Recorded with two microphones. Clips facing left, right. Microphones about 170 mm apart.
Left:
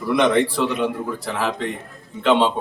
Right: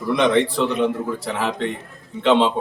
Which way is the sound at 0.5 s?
Centre (ahead or behind).